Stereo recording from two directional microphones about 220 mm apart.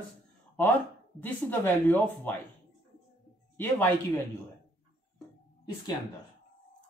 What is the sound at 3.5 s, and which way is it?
Speech, 10° left (ahead or behind).